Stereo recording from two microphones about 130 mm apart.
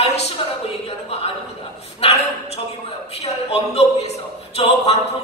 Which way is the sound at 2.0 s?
50° left (ahead or behind).